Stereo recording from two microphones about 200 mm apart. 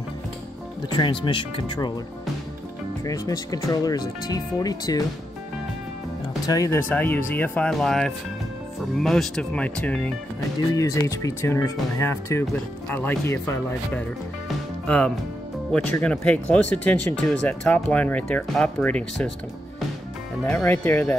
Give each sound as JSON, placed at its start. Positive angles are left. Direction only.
{"t": 0.8, "sound": "speech", "side_deg": 25}
{"t": 3.0, "sound": "speech", "side_deg": 15}
{"t": 6.4, "sound": "speech", "side_deg": 15}
{"t": 10.7, "sound": "speech", "side_deg": 15}
{"t": 20.4, "sound": "speech", "side_deg": 10}